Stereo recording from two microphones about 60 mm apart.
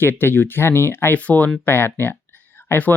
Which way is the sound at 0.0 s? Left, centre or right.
Left.